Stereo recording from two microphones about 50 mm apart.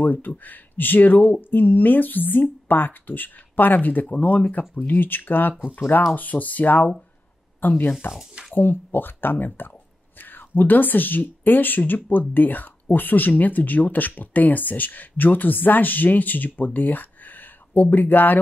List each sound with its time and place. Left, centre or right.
0.0 s speech: left